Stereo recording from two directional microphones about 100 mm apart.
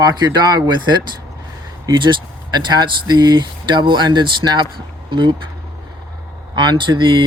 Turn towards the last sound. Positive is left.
turn(degrees=-55)  # may be behind; listen again after turning